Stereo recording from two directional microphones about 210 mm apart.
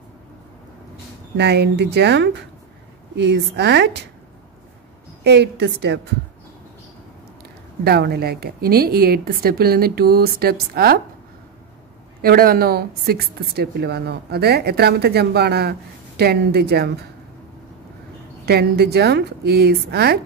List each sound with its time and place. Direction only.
1.3 s a woman's voice: 55° right (ahead or behind)
5.2 s a woman's voice: 55° right (ahead or behind)
7.8 s a woman's voice: 50° right (ahead or behind)
12.2 s a woman's voice: 45° right (ahead or behind)
18.4 s a woman's voice: 50° right (ahead or behind)